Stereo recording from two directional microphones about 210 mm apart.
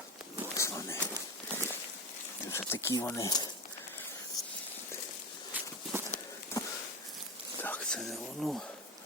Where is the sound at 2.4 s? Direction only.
10° left (ahead or behind).